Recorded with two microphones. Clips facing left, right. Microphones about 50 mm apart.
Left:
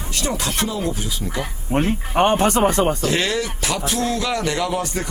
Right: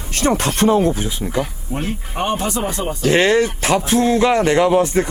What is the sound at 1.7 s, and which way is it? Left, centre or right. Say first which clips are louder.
Speech: left 7 dB; left.